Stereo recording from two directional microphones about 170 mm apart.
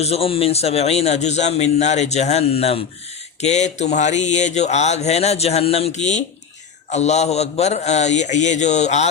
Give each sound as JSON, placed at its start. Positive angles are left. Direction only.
{"t": 0.0, "sound": "a man's voice", "side_deg": 35}